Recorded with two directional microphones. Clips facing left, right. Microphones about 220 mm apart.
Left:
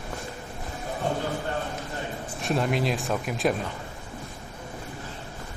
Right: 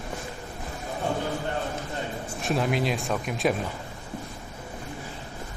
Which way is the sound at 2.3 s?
Centre (ahead or behind).